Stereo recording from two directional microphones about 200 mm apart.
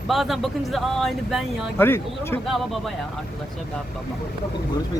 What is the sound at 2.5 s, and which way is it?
Speech, centre (ahead or behind).